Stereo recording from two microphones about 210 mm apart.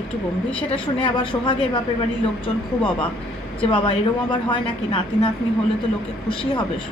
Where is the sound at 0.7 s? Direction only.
25° left (ahead or behind).